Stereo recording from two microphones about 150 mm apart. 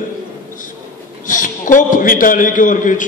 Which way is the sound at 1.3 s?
60° left (ahead or behind).